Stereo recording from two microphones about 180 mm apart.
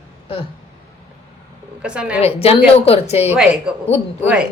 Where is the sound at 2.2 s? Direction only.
35° left (ahead or behind).